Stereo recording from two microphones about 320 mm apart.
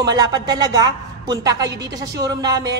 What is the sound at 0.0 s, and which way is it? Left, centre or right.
A woman's voice, centre.